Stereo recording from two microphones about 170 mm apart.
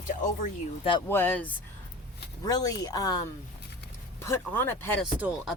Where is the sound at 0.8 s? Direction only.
30° left (ahead or behind).